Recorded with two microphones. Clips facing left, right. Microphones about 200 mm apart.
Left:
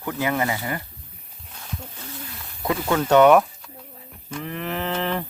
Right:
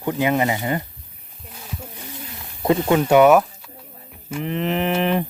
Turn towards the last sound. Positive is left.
turn(degrees=-15)  # may be behind; listen again after turning